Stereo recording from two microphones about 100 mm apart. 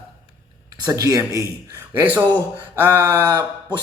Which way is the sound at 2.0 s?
20° right (ahead or behind).